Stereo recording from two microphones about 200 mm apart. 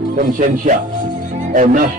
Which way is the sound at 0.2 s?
40° right (ahead or behind).